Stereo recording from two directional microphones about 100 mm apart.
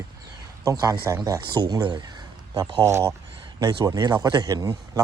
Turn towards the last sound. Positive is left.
turn(degrees=-35)  # may be behind; listen again after turning